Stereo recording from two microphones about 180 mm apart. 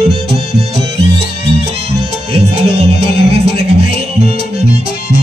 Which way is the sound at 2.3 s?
35° right (ahead or behind).